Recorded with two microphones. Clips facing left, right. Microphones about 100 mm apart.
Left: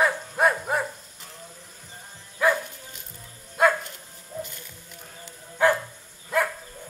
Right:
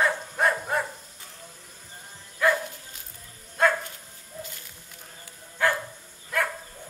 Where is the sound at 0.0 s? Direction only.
15° left (ahead or behind).